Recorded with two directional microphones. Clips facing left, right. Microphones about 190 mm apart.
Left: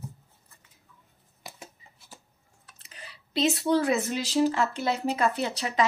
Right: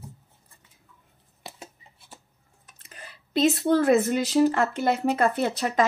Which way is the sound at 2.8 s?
50° right (ahead or behind).